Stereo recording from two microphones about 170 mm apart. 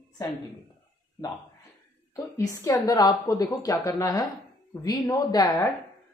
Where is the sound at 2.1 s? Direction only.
15° left (ahead or behind).